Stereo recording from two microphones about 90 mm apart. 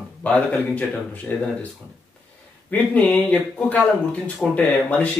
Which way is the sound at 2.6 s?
15° left (ahead or behind).